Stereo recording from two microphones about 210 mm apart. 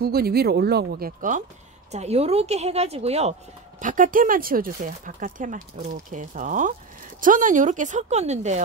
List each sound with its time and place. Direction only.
0.0 s speech: 45° right (ahead or behind)
1.9 s a woman's voice: 30° right (ahead or behind)